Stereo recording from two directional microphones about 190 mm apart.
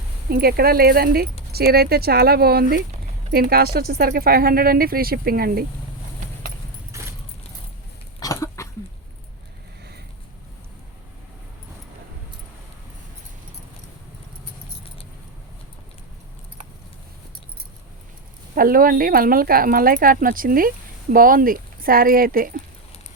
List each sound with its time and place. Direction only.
0.3 s speech: 55° right (ahead or behind)
6.9 s keys jangling: 15° right (ahead or behind)
8.2 s cough: 15° left (ahead or behind)
18.5 s speech: 50° right (ahead or behind)